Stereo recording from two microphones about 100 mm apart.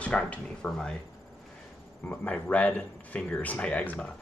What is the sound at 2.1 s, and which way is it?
Speech, 15° left (ahead or behind).